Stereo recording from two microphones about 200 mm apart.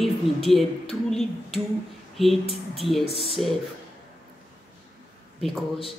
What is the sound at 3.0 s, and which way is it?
Speech, 30° left (ahead or behind).